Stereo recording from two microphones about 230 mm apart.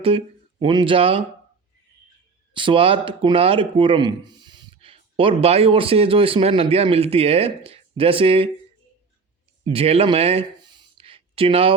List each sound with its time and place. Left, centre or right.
0.6 s speech: centre
2.5 s speech: right
9.6 s a sound: right